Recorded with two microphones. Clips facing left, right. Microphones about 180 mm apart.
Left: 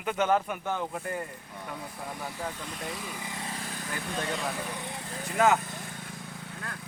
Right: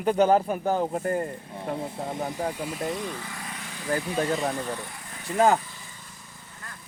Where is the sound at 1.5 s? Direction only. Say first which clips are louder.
Right 8 dB; 30° right (ahead or behind).